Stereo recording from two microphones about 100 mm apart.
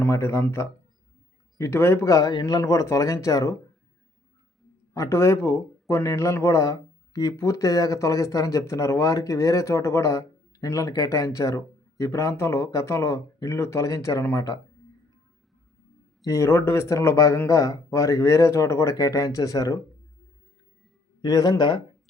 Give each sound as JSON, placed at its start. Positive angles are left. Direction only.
{"t": 0.0, "sound": "speech", "side_deg": 25}
{"t": 1.5, "sound": "speech", "side_deg": 25}
{"t": 4.9, "sound": "speech", "side_deg": 25}
{"t": 16.2, "sound": "speech", "side_deg": 30}
{"t": 21.2, "sound": "speech", "side_deg": 40}